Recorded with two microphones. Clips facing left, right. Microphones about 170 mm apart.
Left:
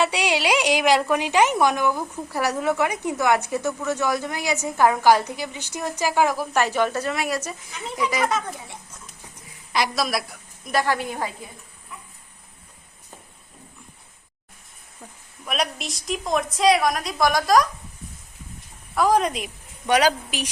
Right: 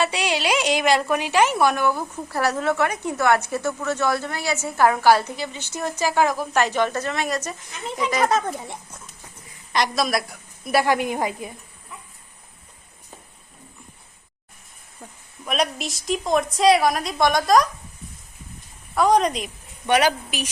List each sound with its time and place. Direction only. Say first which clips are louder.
0.0 s a woman's voice: left 1 dB; 15° left (ahead or behind)
8.2 s a child's voice: right 5 dB; 40° right (ahead or behind)
9.7 s a woman's voice: right 2 dB; 5° left (ahead or behind); by 11.4 s 15° right (ahead or behind)
15.4 s a woman's voice: right 3 dB; centre (ahead or behind)
18.9 s a woman's voice: right 2 dB; 5° left (ahead or behind)